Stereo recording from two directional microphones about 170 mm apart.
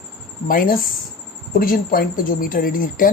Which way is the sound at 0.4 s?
55° left (ahead or behind).